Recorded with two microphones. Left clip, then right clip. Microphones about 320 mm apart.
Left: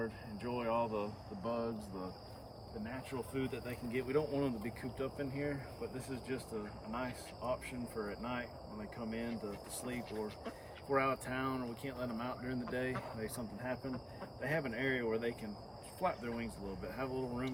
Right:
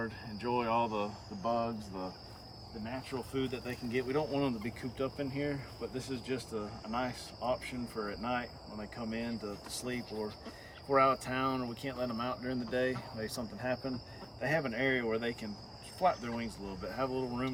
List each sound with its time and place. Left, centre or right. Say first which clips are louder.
0.0 s speech: right 4 dB; centre
2.8 s speech: right 4 dB; centre
10.1 s speech: right 2 dB; left
10.9 s speech: right 6 dB; centre